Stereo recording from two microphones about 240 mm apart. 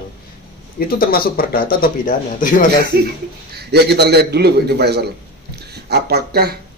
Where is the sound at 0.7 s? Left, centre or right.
Left.